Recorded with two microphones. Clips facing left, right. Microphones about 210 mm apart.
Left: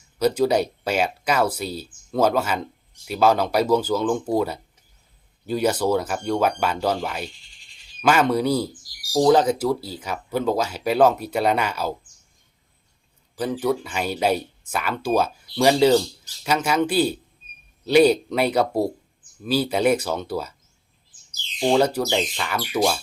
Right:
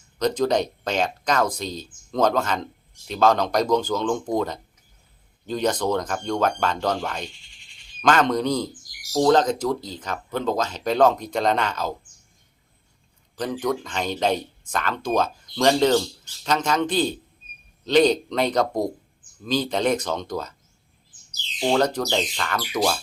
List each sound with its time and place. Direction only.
0.2 s speech: 10° left (ahead or behind)
8.8 s speech: 30° left (ahead or behind)
9.1 s speech: 10° left (ahead or behind)
13.3 s speech: 10° left (ahead or behind)
21.6 s speech: 10° left (ahead or behind)